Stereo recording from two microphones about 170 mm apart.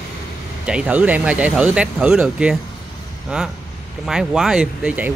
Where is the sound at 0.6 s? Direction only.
5° right (ahead or behind).